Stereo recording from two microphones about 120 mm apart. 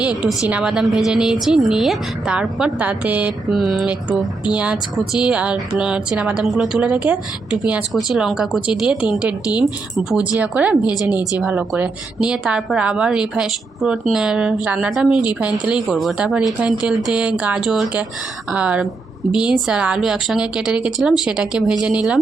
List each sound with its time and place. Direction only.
0.4 s speech: 10° right (ahead or behind)
3.5 s speech: centre (ahead or behind)
9.5 s speech: 35° left (ahead or behind)
10.0 s speech: 10° right (ahead or behind)